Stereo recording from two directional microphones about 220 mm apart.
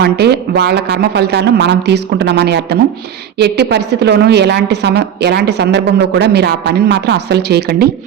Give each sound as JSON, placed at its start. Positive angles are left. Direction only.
{"t": 0.0, "sound": "a woman's voice", "side_deg": -45}